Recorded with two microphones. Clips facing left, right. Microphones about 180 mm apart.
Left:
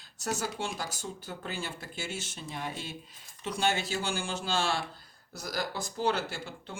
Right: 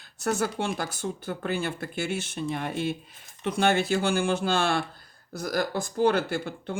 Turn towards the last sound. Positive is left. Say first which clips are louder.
# right 10 dB
turn(degrees=-55)  # may be behind; listen again after turning